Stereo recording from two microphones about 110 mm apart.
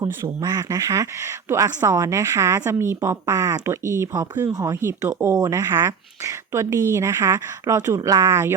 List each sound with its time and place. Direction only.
0.0 s speech: 35° right (ahead or behind)
4.8 s speech: 25° right (ahead or behind)